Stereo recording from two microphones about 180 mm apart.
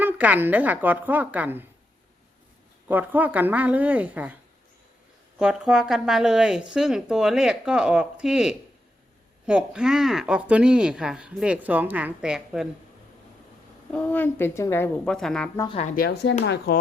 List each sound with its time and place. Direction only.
0.0 s a woman's voice: 10° right (ahead or behind)
2.9 s a woman's voice: 10° right (ahead or behind)
5.4 s speech: 5° right (ahead or behind)
13.9 s a woman's voice: 10° left (ahead or behind)
16.0 s speech: 65° left (ahead or behind)